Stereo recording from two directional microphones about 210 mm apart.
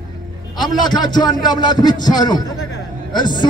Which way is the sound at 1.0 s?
20° left (ahead or behind).